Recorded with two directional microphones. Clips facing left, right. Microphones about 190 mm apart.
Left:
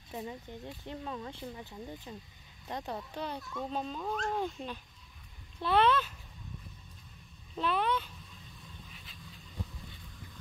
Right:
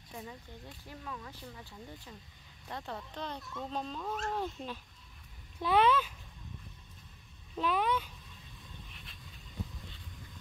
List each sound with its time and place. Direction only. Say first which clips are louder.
0.1 s speech: left 5 dB; 20° left (ahead or behind); by 6.1 s 10° right (ahead or behind)
7.5 s speech: even; 10° right (ahead or behind)